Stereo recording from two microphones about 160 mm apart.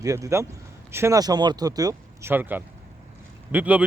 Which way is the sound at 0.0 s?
20° right (ahead or behind).